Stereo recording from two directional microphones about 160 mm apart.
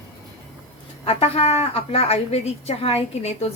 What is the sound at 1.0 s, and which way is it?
A woman's voice, 40° left (ahead or behind).